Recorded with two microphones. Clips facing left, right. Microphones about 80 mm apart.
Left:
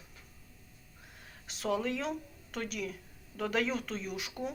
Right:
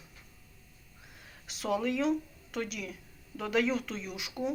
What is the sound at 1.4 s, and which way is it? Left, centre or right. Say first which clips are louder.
Speech: right 2 dB; left.